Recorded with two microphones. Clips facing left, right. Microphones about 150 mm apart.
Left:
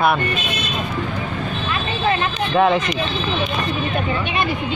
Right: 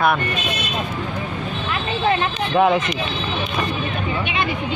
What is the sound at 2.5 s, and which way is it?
Speech, 5° right (ahead or behind).